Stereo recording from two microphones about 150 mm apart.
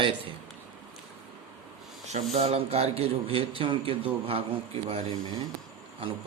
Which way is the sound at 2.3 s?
45° right (ahead or behind).